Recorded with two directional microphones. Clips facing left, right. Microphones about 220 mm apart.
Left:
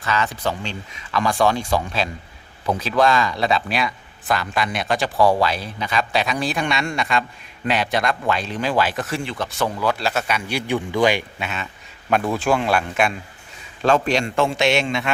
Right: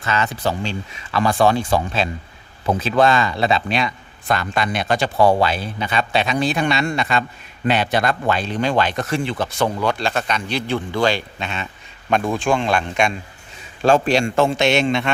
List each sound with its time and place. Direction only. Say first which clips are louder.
0.0 s speech: right 1 dB; 25° right (ahead or behind)
3.7 s speech: right 2 dB; centre (ahead or behind)
5.1 s speech: right 2 dB; 25° right (ahead or behind)
6.1 s speech: right 3 dB; centre (ahead or behind)
13.9 s a man's voice: right 3 dB; 30° right (ahead or behind)
14.5 s speech: right 2 dB; centre (ahead or behind)